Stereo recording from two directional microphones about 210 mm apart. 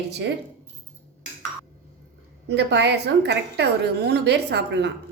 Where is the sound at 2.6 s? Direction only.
55° right (ahead or behind).